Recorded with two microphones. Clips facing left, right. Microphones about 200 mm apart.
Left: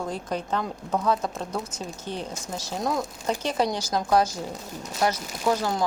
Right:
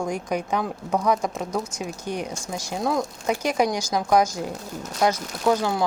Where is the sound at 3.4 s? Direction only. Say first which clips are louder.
Right 3 dB; 10° right (ahead or behind).